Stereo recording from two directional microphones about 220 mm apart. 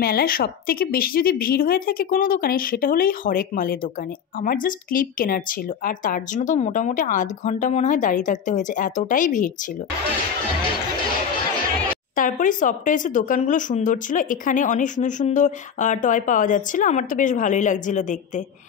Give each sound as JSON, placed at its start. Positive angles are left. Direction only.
{"t": 0.0, "sound": "speech", "side_deg": 45}
{"t": 12.2, "sound": "speech", "side_deg": 35}